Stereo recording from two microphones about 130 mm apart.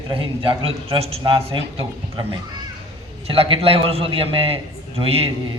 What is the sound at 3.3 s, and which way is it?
A man's voice, 45° right (ahead or behind).